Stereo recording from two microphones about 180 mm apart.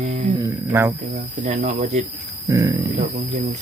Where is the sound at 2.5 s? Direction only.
20° right (ahead or behind).